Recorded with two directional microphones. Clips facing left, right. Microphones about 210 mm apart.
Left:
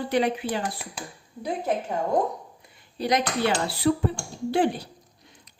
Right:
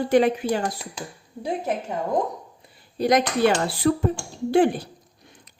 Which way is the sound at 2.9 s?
50° right (ahead or behind).